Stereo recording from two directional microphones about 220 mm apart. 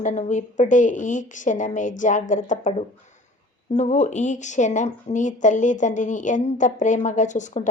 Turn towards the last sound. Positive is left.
turn(degrees=35)  # may be behind; listen again after turning